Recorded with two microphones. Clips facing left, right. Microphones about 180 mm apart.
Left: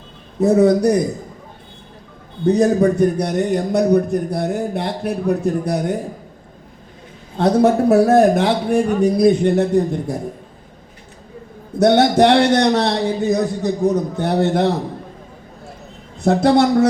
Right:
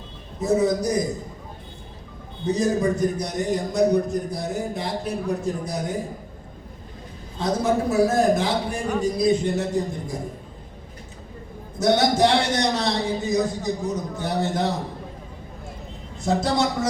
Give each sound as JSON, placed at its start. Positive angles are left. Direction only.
{"t": 0.3, "sound": "a man's voice", "side_deg": 65}
{"t": 2.5, "sound": "a man's voice", "side_deg": 65}
{"t": 7.3, "sound": "a man's voice", "side_deg": 65}
{"t": 11.8, "sound": "a man's voice", "side_deg": 65}
{"t": 16.2, "sound": "a man's voice", "side_deg": 65}